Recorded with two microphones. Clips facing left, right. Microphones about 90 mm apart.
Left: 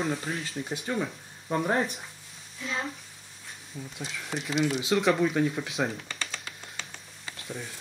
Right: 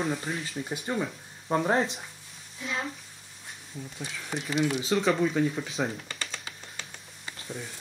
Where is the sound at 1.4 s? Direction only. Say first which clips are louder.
Right 2 dB; 25° right (ahead or behind).